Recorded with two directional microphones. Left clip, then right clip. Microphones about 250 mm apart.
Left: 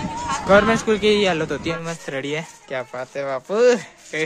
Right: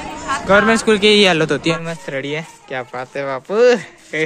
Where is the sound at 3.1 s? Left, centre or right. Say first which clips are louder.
Right 4 dB; centre.